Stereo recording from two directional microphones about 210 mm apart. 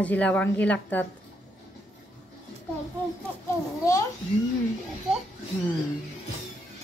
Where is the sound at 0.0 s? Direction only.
5° left (ahead or behind).